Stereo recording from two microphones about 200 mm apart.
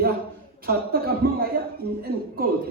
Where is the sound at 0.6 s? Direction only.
50° right (ahead or behind).